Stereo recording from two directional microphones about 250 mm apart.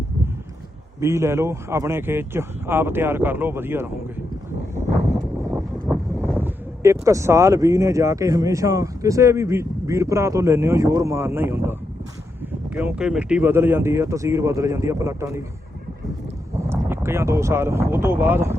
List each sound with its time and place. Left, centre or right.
0.9 s speech: centre
5.8 s a sound: centre
6.3 s speech: centre
12.7 s speech: centre
16.6 s speech: centre